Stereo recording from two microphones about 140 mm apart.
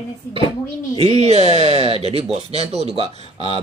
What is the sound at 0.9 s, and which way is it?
Speech, 45° right (ahead or behind).